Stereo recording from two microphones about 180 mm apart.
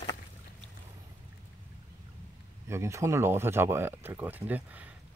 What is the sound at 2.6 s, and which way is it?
Speech, 15° right (ahead or behind).